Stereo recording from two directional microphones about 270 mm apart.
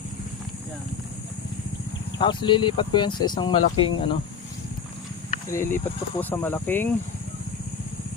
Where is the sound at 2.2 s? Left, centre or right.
Centre.